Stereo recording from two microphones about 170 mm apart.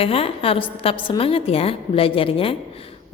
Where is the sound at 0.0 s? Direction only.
35° left (ahead or behind).